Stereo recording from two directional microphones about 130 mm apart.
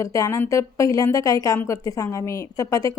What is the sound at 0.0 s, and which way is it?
Speech, 25° left (ahead or behind).